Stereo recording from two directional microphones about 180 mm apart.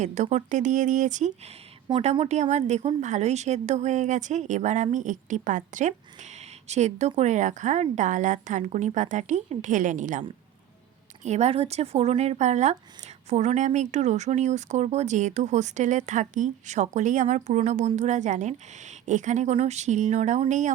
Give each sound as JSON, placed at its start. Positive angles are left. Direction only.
{"t": 0.0, "sound": "speech", "side_deg": -40}
{"t": 1.9, "sound": "speech", "side_deg": -30}